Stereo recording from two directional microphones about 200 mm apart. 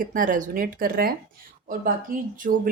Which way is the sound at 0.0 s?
40° right (ahead or behind).